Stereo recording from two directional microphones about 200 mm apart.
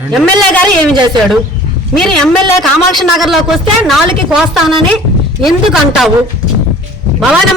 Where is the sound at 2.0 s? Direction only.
5° left (ahead or behind).